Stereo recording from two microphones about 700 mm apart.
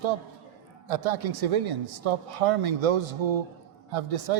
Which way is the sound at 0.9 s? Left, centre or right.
Right.